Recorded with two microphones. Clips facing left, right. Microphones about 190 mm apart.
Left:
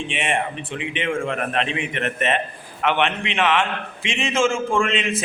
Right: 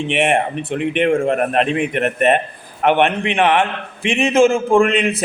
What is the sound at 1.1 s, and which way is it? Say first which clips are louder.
A man's voice: right 8 dB; 45° right (ahead or behind).